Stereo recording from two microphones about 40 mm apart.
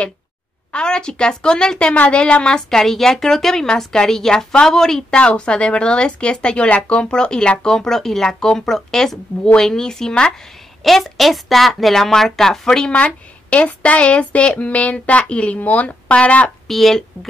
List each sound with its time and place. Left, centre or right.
0.7 s a woman's voice: left
5.1 s a woman's voice: left
10.8 s a woman's voice: centre
12.9 s speech: left
16.6 s speech: centre